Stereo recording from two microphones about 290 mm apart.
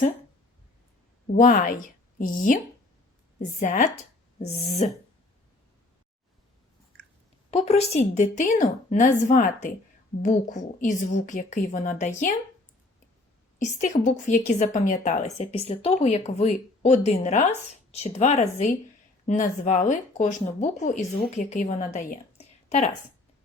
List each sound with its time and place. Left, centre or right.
1.3 s a woman's voice: left
3.6 s a woman's voice: left
7.5 s a woman's voice: left
13.6 s a woman's voice: left